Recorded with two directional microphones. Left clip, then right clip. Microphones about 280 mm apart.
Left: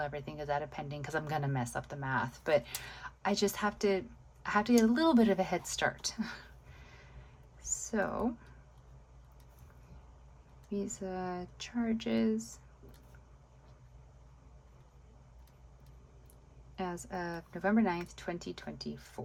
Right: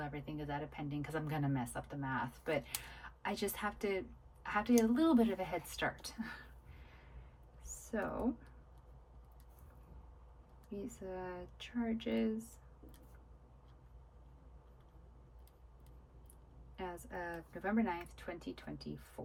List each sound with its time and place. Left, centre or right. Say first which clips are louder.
0.0 s a woman's voice: left 6 dB; centre
10.7 s speech: left 7 dB; centre
16.7 s a woman's voice: left 6 dB; centre